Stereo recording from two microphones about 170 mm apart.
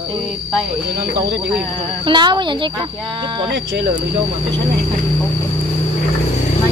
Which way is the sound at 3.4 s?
90° right.